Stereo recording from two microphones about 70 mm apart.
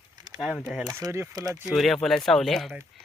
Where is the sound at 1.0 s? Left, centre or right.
Right.